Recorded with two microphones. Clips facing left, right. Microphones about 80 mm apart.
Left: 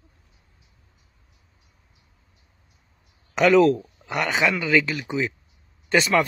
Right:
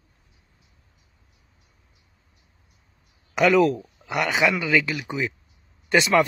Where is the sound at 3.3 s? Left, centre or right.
Centre.